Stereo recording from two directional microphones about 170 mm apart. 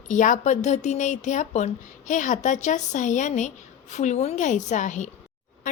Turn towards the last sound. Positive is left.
turn(degrees=45)  # may be behind; listen again after turning